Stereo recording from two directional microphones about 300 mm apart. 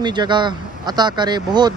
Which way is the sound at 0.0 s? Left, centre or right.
Centre.